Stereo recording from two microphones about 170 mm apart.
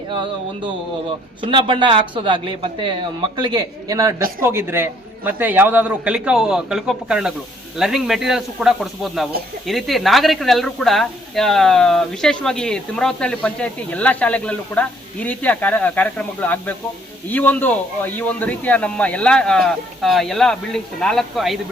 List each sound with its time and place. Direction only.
0.1 s music: 30° right (ahead or behind)
1.4 s a man's voice: 30° right (ahead or behind); by 21.6 s centre (ahead or behind)